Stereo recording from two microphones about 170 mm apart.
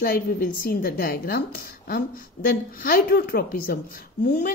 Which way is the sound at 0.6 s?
60° left (ahead or behind).